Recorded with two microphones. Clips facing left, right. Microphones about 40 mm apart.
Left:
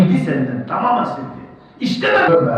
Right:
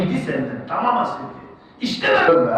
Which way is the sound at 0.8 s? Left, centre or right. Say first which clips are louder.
Left 2 dB; centre.